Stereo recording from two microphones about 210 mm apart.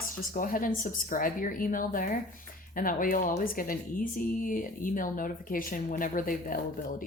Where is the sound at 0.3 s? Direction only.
40° left (ahead or behind).